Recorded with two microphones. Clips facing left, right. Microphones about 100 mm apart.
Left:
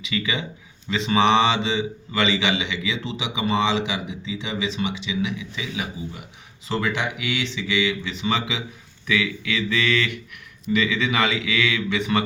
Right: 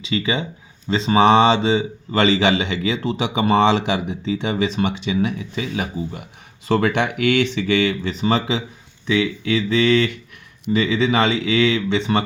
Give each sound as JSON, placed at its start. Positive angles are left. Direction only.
{"t": 0.0, "sound": "speech", "side_deg": -30}